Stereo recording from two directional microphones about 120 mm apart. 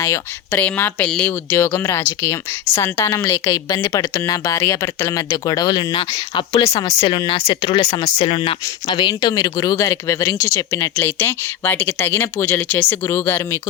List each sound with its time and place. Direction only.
0.0 s speech: 20° left (ahead or behind); by 6.6 s 40° left (ahead or behind)
7.3 s speech: 50° left (ahead or behind)
8.9 s speech: 40° left (ahead or behind); by 13.6 s 20° left (ahead or behind)